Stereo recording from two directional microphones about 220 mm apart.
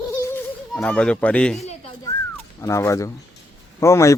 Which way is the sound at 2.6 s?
15° left (ahead or behind).